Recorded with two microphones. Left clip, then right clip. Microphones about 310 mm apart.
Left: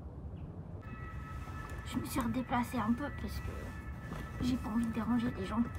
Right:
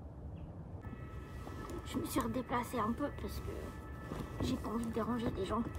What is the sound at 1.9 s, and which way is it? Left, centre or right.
Speech, centre.